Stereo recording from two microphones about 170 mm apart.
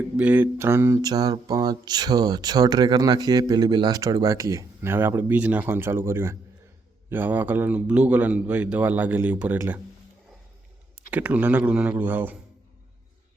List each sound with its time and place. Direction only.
0.2 s mantra: 10° right (ahead or behind)
7.1 s a man's voice: 10° right (ahead or behind)
11.1 s a man's voice: 10° right (ahead or behind)